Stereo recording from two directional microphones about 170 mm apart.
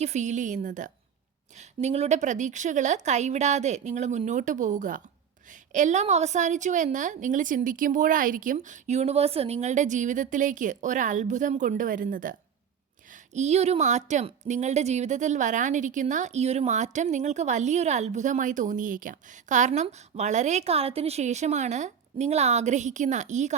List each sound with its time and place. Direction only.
0.0 s a woman's voice: 45° right (ahead or behind)
13.3 s a woman's voice: 40° right (ahead or behind)